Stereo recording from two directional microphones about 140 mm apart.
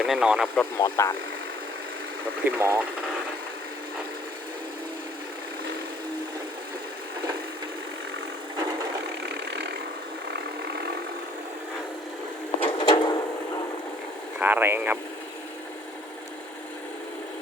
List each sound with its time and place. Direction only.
0.0 s speech: 5° right (ahead or behind)
0.5 s speech: 20° left (ahead or behind)
2.4 s speech: 15° right (ahead or behind)
12.6 s a sound: 30° left (ahead or behind)
14.3 s speech: 15° right (ahead or behind)